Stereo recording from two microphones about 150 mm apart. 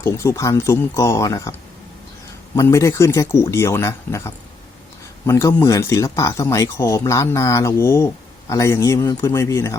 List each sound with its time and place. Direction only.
0.0 s speech: 20° left (ahead or behind)
2.6 s speech: 20° left (ahead or behind)